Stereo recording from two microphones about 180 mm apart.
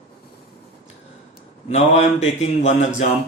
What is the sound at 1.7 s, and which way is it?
Speech, 40° left (ahead or behind).